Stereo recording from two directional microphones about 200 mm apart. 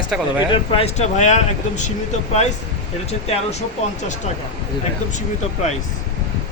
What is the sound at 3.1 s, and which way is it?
Speech, 30° left (ahead or behind).